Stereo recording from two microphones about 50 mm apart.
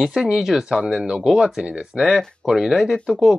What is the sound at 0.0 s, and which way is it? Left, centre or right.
Speech, centre.